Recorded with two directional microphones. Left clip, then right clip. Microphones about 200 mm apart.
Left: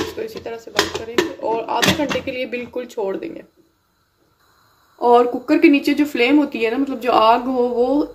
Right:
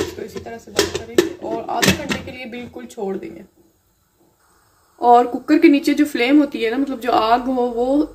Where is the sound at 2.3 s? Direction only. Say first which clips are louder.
Left 7 dB; 45° left (ahead or behind).